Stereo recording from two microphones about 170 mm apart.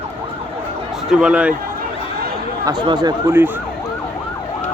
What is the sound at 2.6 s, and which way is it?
Speech, 25° right (ahead or behind).